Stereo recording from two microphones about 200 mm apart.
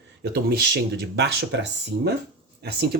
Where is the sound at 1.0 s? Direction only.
55° right (ahead or behind).